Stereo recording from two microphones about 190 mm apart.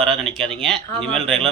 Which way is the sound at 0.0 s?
Centre (ahead or behind).